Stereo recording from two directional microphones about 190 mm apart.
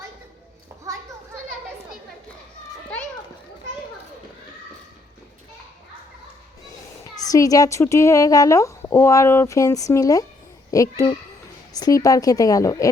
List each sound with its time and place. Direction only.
7.2 s speech: 20° left (ahead or behind)